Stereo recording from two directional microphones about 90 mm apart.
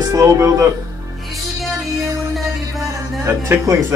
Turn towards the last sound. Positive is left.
turn(degrees=-30)  # may be behind; listen again after turning